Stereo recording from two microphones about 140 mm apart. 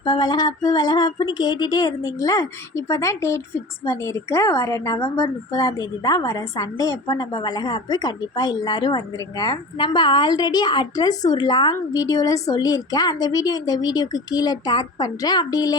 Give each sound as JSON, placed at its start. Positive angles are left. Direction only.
{"t": 0.0, "sound": "speech", "side_deg": 30}